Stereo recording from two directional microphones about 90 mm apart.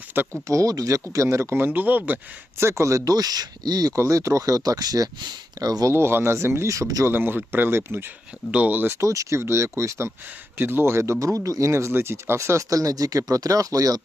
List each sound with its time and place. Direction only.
0.4 s speech: 40° right (ahead or behind); by 2.1 s 20° right (ahead or behind)
2.6 s speech: 30° right (ahead or behind)
5.9 s speech: 30° right (ahead or behind)
7.1 s speech: 25° right (ahead or behind)
8.4 s speech: 15° right (ahead or behind)
9.0 s speech: 35° right (ahead or behind)